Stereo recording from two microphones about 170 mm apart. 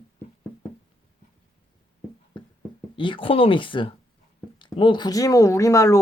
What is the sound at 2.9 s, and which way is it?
Speech, 30° left (ahead or behind).